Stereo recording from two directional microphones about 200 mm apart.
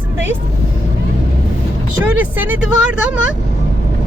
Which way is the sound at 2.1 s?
10° right (ahead or behind).